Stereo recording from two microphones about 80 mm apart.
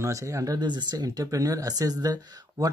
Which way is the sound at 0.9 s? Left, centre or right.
Right.